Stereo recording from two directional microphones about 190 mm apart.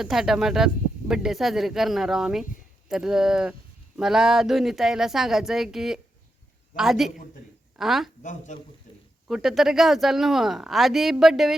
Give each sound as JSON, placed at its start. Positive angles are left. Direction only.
{"t": 0.0, "sound": "speech", "side_deg": -5}
{"t": 8.2, "sound": "speech", "side_deg": 40}
{"t": 9.2, "sound": "speech", "side_deg": 0}